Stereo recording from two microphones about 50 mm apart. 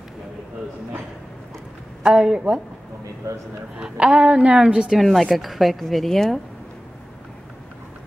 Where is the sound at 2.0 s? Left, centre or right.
Centre.